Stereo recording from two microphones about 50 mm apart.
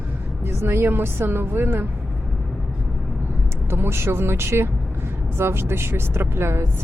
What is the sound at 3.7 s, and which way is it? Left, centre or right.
Speech, right.